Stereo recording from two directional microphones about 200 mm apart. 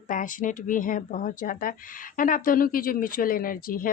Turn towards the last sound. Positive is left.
turn(degrees=45)  # may be behind; listen again after turning